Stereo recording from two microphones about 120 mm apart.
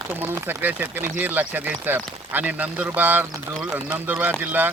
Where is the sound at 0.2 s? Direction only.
15° right (ahead or behind).